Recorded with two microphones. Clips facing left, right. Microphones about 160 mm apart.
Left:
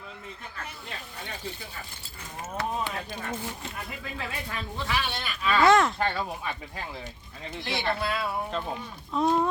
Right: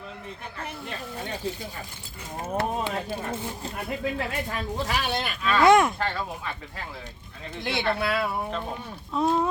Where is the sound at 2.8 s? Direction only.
30° right (ahead or behind).